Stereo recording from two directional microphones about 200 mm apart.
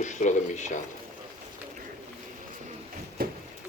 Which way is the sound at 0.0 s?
40° left (ahead or behind).